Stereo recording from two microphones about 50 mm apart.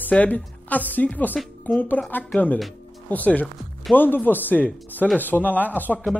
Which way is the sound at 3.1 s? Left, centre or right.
Left.